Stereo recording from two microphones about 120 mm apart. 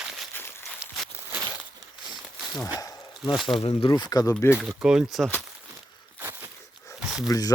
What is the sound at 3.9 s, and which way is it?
Speech, 35° left (ahead or behind).